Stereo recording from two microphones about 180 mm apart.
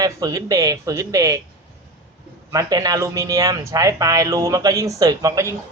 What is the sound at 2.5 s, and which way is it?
Speech, 20° right (ahead or behind).